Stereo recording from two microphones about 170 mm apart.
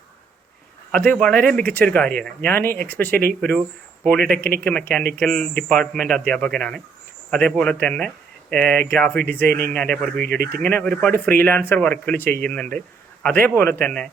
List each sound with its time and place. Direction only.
0.9 s speech: 5° left (ahead or behind)
4.4 s speech: 60° right (ahead or behind)
4.6 s speech: 5° left (ahead or behind)
9.5 s speech: 60° right (ahead or behind)
9.7 s speech: 5° left (ahead or behind)
10.2 s speech: 60° right (ahead or behind)
10.5 s speech: 10° left (ahead or behind)